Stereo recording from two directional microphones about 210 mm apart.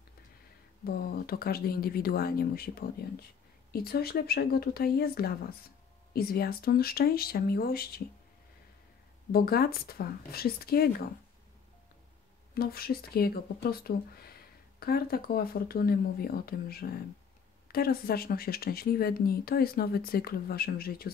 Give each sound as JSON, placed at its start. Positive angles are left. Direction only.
{"t": 0.8, "sound": "speech", "side_deg": 45}
{"t": 9.3, "sound": "speech", "side_deg": 45}
{"t": 12.5, "sound": "speech", "side_deg": 45}